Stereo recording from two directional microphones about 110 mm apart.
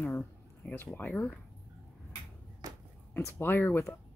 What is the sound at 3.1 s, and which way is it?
Speech, 20° left (ahead or behind).